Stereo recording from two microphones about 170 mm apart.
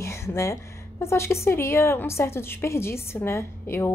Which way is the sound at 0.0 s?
15° left (ahead or behind).